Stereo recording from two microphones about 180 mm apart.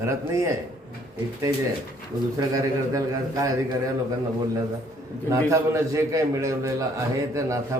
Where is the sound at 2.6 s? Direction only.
20° right (ahead or behind).